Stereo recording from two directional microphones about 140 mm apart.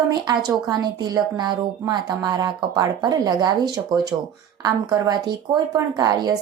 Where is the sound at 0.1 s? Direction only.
30° right (ahead or behind).